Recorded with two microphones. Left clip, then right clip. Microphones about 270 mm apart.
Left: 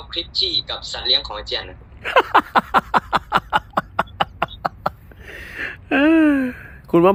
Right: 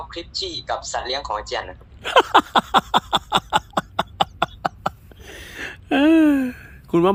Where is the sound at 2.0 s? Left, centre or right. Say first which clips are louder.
Even; right.